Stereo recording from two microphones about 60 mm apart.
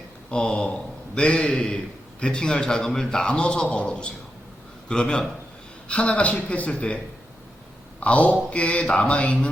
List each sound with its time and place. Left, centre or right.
0.3 s a man's voice: centre
8.0 s speech: left